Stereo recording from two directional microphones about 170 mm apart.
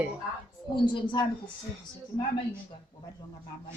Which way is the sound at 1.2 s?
25° left (ahead or behind).